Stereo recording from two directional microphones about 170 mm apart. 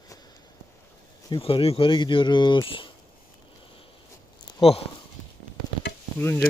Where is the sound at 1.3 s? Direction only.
30° left (ahead or behind).